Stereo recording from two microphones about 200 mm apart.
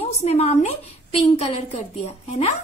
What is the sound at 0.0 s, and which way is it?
A woman's voice, 30° left (ahead or behind).